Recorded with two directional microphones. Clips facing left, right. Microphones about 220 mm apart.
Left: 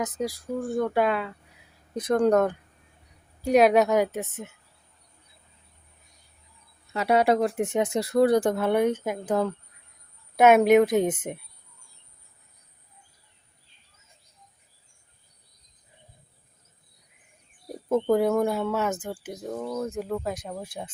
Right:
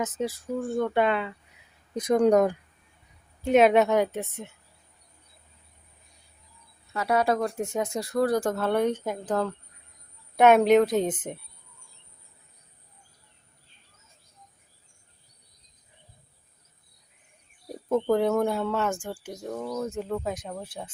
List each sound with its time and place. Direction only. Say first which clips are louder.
0.0 s speech: even; centre (ahead or behind)
2.0 s speech: right 1 dB; 10° right (ahead or behind)
3.4 s speech: even; centre (ahead or behind)
6.9 s speech: left 3 dB; 20° left (ahead or behind)
18.1 s speech: left 1 dB; 10° left (ahead or behind)
18.9 s speech: left 1 dB; 20° left (ahead or behind)
19.4 s speech: left 1 dB; 5° left (ahead or behind)